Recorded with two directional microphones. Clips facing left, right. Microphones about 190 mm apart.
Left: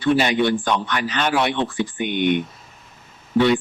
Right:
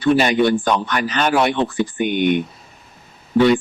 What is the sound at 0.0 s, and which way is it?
Speech, 45° right (ahead or behind).